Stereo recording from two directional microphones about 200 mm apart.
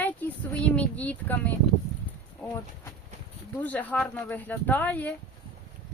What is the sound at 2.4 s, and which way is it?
Speech, 5° left (ahead or behind).